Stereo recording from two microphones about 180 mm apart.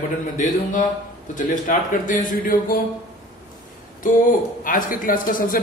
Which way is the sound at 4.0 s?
50° left (ahead or behind).